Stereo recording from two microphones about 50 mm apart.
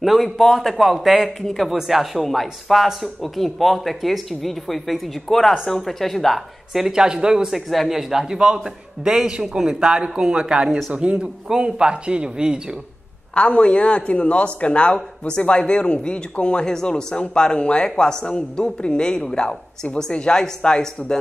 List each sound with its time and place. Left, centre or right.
0.0 s a man's voice: centre
6.8 s a man's voice: centre
13.3 s speech: left